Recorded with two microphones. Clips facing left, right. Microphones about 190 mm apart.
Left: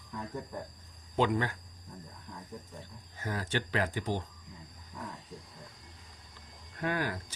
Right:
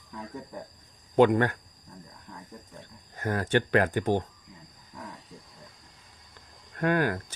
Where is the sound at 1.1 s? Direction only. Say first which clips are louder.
Right 9 dB; 60° right (ahead or behind).